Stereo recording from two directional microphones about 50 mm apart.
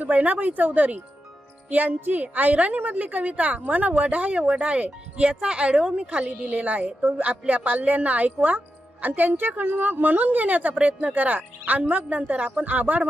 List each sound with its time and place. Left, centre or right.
0.0 s speech: right